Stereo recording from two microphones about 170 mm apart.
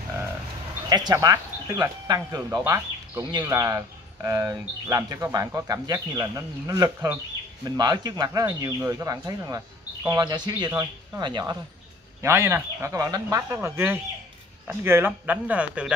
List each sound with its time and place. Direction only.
0.8 s speech: 25° right (ahead or behind)
12.2 s speech: 15° right (ahead or behind)